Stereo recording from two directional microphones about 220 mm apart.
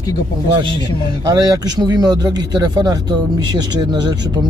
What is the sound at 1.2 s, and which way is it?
Speech, 15° right (ahead or behind).